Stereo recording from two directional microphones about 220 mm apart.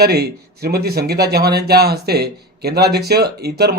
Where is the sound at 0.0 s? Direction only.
45° right (ahead or behind).